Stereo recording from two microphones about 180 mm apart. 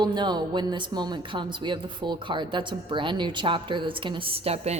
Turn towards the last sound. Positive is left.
turn(degrees=-35)  # may be behind; listen again after turning